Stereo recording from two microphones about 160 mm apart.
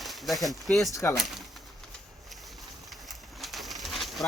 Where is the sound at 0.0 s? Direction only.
Centre (ahead or behind).